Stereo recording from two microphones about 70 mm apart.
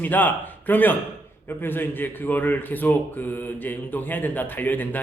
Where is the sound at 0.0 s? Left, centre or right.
Left.